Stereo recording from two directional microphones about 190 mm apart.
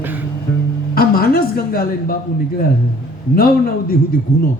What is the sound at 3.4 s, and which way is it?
Speech, 50° left (ahead or behind).